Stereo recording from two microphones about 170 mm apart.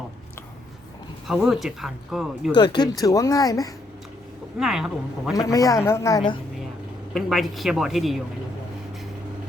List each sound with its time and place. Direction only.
1.3 s speech: 5° right (ahead or behind)
2.6 s speech: 25° left (ahead or behind)
4.5 s speech: 5° right (ahead or behind)
5.3 s speech: 20° left (ahead or behind)
7.1 s speech: centre (ahead or behind)